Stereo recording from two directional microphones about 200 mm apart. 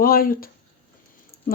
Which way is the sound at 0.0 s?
45° left (ahead or behind).